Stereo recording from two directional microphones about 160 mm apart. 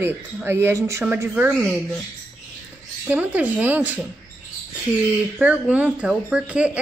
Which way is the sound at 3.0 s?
10° right (ahead or behind).